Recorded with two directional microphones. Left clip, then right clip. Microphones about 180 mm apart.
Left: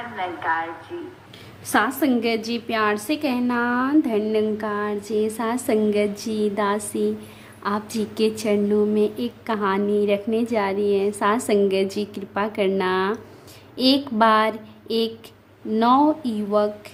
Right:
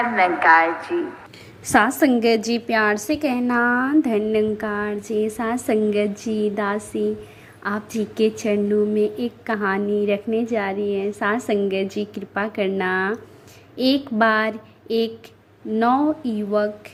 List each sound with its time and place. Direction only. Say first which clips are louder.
0.0 s a woman's voice: right 10 dB; 40° right (ahead or behind)
1.6 s a woman's voice: right 4 dB; 25° right (ahead or behind); by 16.7 s 5° right (ahead or behind)